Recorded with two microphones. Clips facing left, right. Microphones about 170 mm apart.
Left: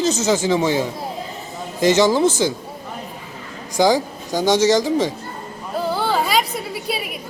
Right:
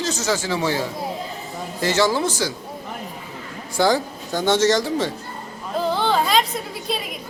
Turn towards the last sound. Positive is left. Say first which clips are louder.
# left 2 dB
turn(degrees=10)  # may be behind; listen again after turning